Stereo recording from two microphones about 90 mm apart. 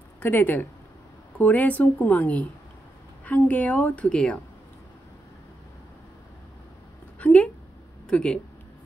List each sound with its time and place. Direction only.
0.2 s a woman's voice: 20° left (ahead or behind)
7.2 s a sound: 15° left (ahead or behind)
8.1 s a woman's voice: 10° left (ahead or behind)